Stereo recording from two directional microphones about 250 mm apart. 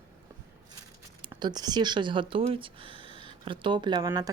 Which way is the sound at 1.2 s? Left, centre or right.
Centre.